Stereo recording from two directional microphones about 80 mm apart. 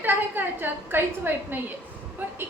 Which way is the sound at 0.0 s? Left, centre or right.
Right.